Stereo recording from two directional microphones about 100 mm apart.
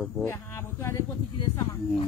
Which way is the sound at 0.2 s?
25° left (ahead or behind).